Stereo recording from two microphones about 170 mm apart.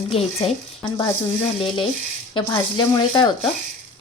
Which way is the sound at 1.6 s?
30° left (ahead or behind).